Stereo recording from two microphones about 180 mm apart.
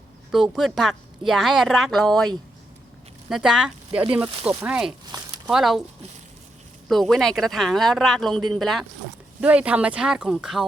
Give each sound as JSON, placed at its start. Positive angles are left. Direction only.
{"t": 0.3, "sound": "a woman's voice", "side_deg": 0}
{"t": 6.8, "sound": "a woman's voice", "side_deg": 0}